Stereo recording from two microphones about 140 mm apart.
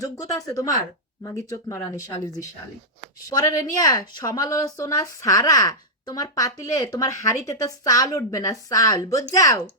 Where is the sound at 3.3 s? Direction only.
25° left (ahead or behind).